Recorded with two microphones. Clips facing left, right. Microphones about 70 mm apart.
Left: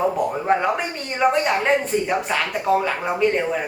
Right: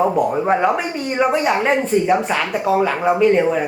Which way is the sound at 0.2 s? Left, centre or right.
Centre.